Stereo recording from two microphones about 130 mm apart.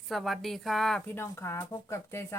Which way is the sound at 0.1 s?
Centre (ahead or behind).